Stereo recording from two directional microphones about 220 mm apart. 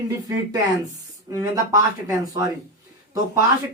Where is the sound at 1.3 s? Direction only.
15° right (ahead or behind).